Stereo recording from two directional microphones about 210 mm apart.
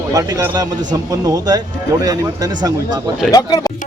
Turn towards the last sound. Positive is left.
turn(degrees=15)  # may be behind; listen again after turning